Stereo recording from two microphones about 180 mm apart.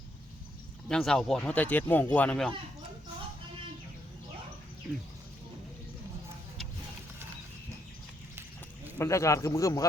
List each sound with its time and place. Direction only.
0.9 s speech: 5° left (ahead or behind)
9.0 s speech: 15° left (ahead or behind)